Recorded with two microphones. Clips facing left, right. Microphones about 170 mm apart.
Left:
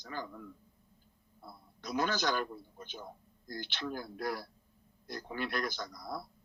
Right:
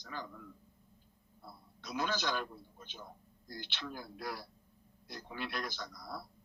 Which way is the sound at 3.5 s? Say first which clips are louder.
Left 5 dB; 50° left (ahead or behind).